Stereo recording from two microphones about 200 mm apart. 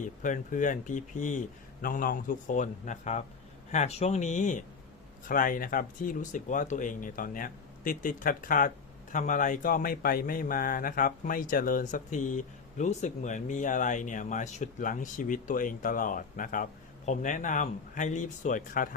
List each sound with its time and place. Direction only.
0.0 s speech: 40° left (ahead or behind)